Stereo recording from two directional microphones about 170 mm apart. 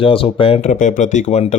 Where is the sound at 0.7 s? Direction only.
45° left (ahead or behind).